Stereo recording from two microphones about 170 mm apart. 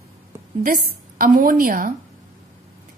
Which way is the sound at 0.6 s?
55° right (ahead or behind).